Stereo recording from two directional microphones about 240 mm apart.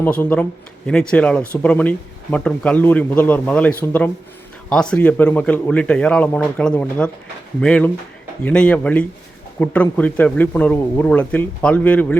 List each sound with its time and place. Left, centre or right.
0.0 s speech: centre